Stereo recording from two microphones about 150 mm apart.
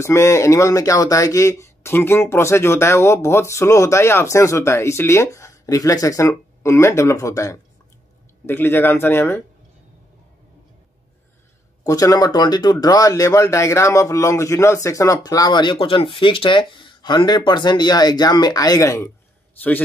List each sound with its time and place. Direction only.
0.0 s speech: 20° left (ahead or behind)
11.8 s speech: 25° left (ahead or behind)